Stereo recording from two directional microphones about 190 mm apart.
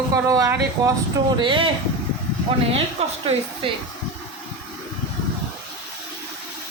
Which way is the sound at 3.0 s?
35° right (ahead or behind).